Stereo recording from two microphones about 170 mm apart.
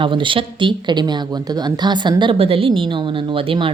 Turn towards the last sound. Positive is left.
turn(degrees=-30)  # may be behind; listen again after turning